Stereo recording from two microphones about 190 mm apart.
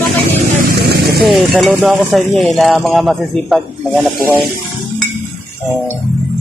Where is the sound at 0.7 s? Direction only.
55° right (ahead or behind).